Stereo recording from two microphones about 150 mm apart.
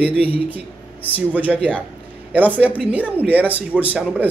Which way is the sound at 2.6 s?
10° right (ahead or behind).